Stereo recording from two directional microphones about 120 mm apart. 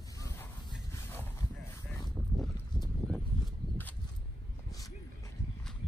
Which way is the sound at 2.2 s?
15° left (ahead or behind).